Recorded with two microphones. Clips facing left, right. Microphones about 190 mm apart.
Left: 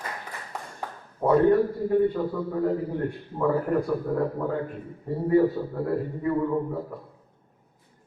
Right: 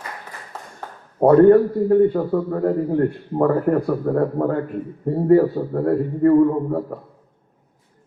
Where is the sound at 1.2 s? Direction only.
55° right (ahead or behind).